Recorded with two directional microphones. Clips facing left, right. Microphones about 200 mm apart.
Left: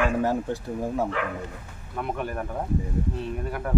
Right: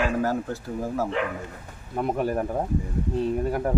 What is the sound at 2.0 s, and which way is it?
Speech, 35° right (ahead or behind).